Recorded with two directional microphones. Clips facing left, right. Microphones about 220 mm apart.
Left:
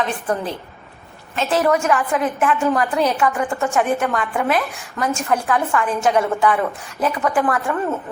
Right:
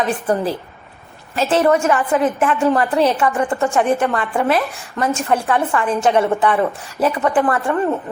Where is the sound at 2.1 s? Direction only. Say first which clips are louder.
Right 3 dB; centre (ahead or behind).